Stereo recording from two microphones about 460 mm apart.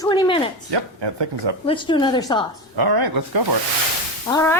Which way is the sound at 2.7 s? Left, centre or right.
Right.